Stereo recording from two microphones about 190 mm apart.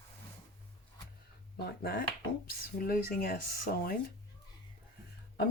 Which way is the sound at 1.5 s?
55° left (ahead or behind).